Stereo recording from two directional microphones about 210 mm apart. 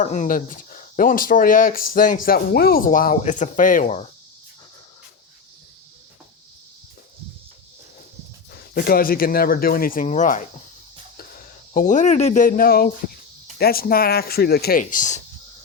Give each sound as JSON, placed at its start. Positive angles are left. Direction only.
{"t": 0.0, "sound": "speech", "side_deg": 35}
{"t": 8.7, "sound": "speech", "side_deg": 45}
{"t": 11.7, "sound": "speech", "side_deg": 40}